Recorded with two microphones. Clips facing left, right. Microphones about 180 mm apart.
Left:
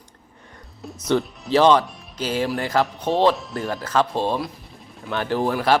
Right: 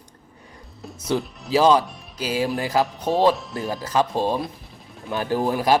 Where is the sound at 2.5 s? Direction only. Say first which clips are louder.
Even; 15° right (ahead or behind).